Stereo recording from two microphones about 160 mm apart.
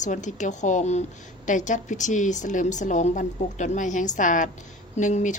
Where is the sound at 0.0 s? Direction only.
50° left (ahead or behind).